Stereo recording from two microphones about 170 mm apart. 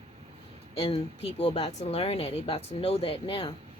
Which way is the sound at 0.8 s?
35° left (ahead or behind).